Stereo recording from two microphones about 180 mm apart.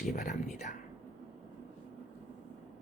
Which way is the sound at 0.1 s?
45° left (ahead or behind).